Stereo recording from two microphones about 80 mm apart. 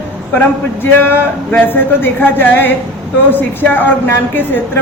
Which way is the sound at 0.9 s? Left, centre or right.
Left.